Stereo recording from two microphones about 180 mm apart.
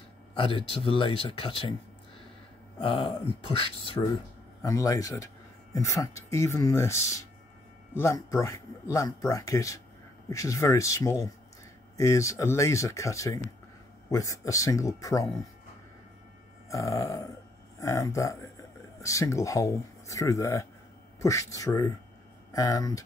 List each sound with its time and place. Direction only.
0.4 s speech: 30° left (ahead or behind)
2.8 s speech: 30° left (ahead or behind)
16.6 s speech: 15° left (ahead or behind)